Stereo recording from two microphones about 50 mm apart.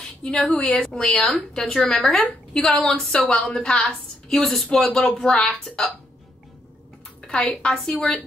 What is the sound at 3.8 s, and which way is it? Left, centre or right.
A woman's voice, centre.